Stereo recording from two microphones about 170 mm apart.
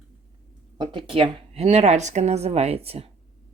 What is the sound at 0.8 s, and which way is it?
A woman's voice, 25° right (ahead or behind).